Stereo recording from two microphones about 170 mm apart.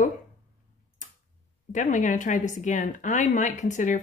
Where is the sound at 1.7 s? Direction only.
50° left (ahead or behind).